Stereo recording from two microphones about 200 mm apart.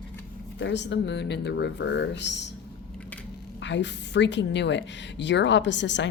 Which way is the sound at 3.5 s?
60° left (ahead or behind).